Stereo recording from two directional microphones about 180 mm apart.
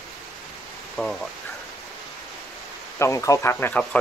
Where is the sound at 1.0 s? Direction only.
Centre (ahead or behind).